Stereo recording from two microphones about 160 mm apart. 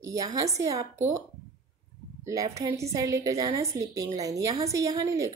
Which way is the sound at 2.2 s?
20° right (ahead or behind).